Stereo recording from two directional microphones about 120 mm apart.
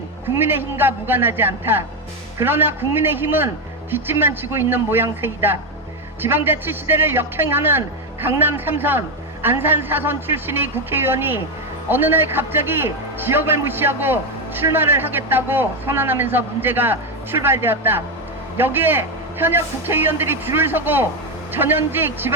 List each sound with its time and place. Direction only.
0.3 s a man's voice: 20° right (ahead or behind)